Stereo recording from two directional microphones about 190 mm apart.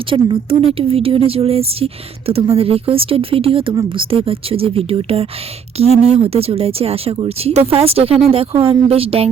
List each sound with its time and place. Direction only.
0.1 s speech: 30° right (ahead or behind)